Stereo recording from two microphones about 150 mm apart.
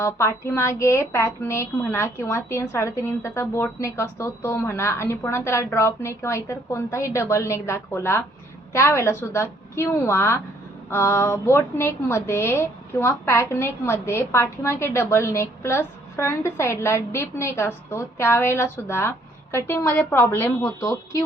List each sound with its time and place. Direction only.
0.0 s a woman's voice: 20° left (ahead or behind)